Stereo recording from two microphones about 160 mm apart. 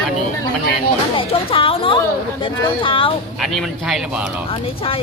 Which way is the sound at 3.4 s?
Centre (ahead or behind).